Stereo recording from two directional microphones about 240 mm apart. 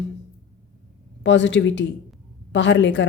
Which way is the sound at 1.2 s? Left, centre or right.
Left.